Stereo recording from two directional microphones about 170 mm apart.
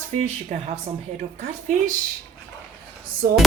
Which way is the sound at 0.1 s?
45° right (ahead or behind).